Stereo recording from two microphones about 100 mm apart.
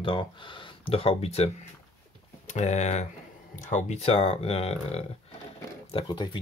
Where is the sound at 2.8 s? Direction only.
90° left.